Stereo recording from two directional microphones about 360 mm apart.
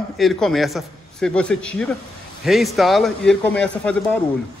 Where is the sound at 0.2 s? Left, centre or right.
Centre.